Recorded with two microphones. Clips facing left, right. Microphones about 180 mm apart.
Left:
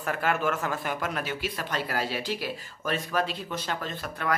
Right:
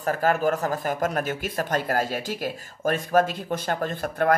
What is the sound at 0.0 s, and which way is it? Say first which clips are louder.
Speech: right 5 dB; 40° right (ahead or behind).